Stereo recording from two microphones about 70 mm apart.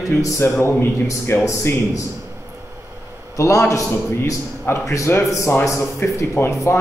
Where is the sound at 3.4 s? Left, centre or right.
Left.